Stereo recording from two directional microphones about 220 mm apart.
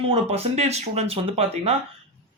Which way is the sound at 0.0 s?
25° right (ahead or behind).